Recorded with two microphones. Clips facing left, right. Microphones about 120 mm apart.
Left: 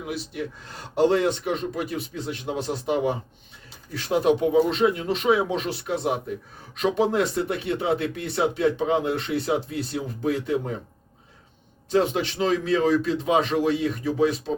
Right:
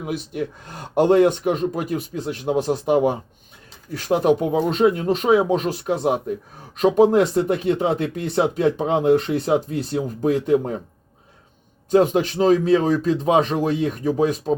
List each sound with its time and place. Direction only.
0.0 s a man's voice: 50° right (ahead or behind); by 8.7 s 30° right (ahead or behind)
9.0 s speech: 45° right (ahead or behind)
11.9 s a man's voice: 45° right (ahead or behind)